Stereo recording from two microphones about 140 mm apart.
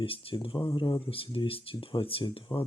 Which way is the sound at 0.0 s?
40° left (ahead or behind).